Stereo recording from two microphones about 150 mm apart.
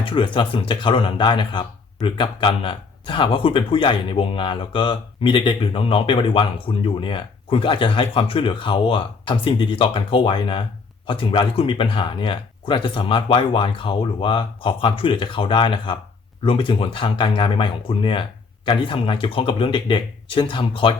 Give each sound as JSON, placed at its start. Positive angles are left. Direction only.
{"t": 0.0, "sound": "speech", "side_deg": 35}